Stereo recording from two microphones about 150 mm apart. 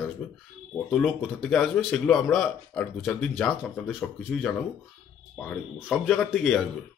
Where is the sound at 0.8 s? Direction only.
Centre (ahead or behind).